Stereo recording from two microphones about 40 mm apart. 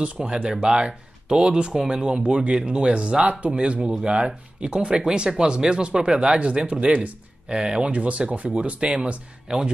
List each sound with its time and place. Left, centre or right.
0.0 s speech: right
7.8 s speech: right
9.5 s speech: centre